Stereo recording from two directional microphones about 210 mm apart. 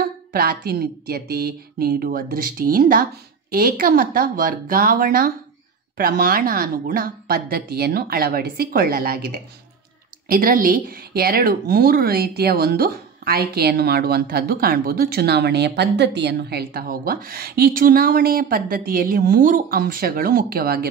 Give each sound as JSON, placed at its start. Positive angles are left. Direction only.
{"t": 0.0, "sound": "a woman's voice", "side_deg": -45}